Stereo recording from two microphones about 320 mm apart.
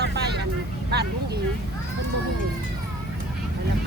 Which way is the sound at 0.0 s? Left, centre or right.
Right.